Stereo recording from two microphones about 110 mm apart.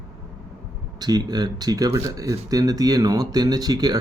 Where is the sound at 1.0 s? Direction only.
40° right (ahead or behind).